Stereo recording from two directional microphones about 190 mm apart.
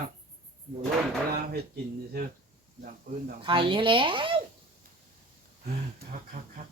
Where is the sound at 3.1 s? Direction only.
45° right (ahead or behind).